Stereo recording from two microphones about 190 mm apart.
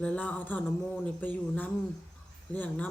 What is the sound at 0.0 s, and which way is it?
Speech, 5° left (ahead or behind).